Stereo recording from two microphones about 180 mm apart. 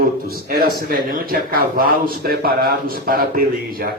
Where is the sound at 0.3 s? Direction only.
55° right (ahead or behind).